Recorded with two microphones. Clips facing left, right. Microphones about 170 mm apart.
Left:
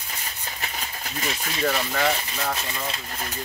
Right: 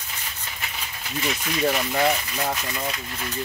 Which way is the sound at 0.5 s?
40° left (ahead or behind).